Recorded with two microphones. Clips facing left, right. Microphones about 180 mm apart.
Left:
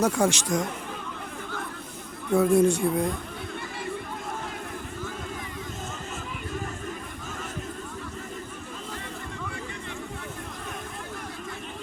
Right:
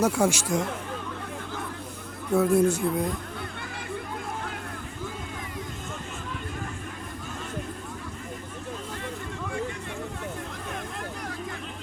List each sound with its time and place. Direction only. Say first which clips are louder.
0.0 s speech: even; 10° right (ahead or behind)
2.3 s speech: left 1 dB; 5° right (ahead or behind)